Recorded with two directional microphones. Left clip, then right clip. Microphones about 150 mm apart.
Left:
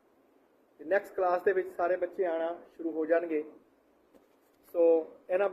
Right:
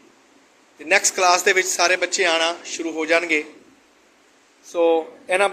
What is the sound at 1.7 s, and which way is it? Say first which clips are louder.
Speech: right 11 dB; 25° right (ahead or behind).